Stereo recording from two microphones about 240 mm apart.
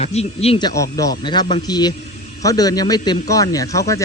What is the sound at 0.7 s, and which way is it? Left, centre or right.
A man's voice, centre.